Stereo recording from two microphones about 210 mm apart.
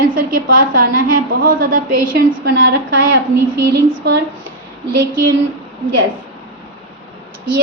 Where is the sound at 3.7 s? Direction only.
60° right (ahead or behind).